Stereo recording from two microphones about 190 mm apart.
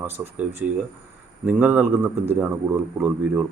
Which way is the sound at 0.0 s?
10° right (ahead or behind).